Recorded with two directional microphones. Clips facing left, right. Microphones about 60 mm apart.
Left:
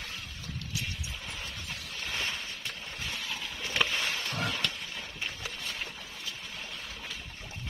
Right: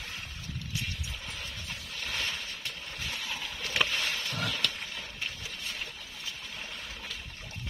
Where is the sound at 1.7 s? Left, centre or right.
Centre.